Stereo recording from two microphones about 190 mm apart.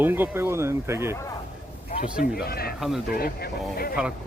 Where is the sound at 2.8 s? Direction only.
Centre (ahead or behind).